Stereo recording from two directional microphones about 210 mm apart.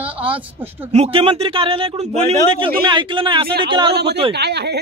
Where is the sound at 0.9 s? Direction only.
30° right (ahead or behind).